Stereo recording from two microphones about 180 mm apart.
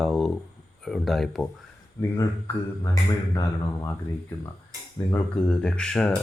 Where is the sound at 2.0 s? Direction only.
10° left (ahead or behind).